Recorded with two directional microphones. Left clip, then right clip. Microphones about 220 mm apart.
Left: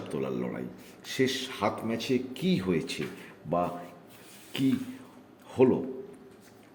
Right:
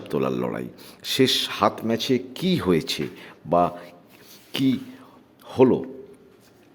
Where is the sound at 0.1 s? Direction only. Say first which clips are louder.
Right 9 dB; 20° right (ahead or behind).